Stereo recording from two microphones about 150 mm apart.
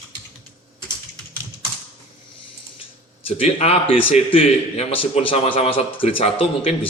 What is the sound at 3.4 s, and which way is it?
A man's voice, 40° left (ahead or behind).